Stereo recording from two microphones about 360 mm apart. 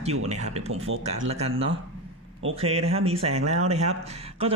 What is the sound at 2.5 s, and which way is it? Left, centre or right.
Speech, centre.